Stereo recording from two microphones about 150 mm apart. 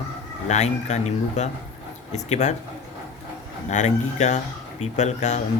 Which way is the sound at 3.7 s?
55° left (ahead or behind).